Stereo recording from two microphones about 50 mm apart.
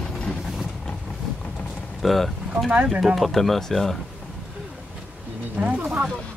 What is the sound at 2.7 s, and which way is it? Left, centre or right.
Speech, centre.